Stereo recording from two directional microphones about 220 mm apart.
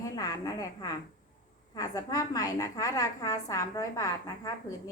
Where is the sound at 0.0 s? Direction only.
15° left (ahead or behind).